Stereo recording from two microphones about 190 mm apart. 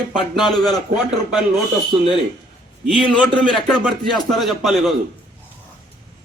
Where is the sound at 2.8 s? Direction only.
5° left (ahead or behind).